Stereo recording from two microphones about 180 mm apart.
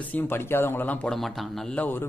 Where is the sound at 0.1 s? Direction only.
10° left (ahead or behind).